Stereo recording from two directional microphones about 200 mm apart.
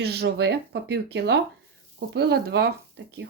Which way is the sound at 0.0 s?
55° right (ahead or behind).